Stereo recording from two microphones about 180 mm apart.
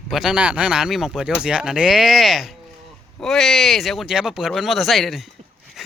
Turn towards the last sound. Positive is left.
turn(degrees=0)  # may be behind; listen again after turning